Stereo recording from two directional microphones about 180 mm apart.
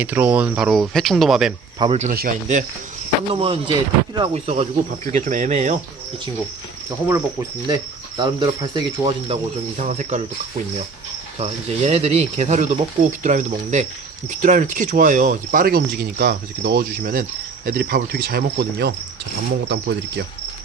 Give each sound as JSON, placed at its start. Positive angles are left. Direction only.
{"t": 0.0, "sound": "speech", "side_deg": -10}
{"t": 1.8, "sound": "speech", "side_deg": -30}
{"t": 2.0, "sound": "speech", "side_deg": -50}
{"t": 3.3, "sound": "speech", "side_deg": -30}
{"t": 7.7, "sound": "speech", "side_deg": -25}
{"t": 11.3, "sound": "speech", "side_deg": -35}